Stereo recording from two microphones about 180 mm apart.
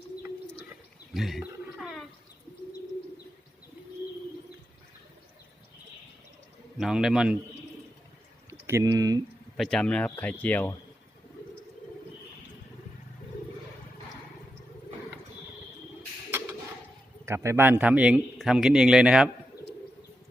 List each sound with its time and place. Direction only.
1.1 s a man's voice: centre (ahead or behind)
1.8 s a sound: centre (ahead or behind)
6.7 s a man's voice: 5° right (ahead or behind)
8.4 s speech: 15° right (ahead or behind)
9.6 s speech: centre (ahead or behind)
17.2 s a man's voice: 15° right (ahead or behind)